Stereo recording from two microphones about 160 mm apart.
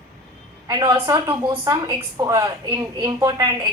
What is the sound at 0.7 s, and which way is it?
A woman's voice, 20° right (ahead or behind).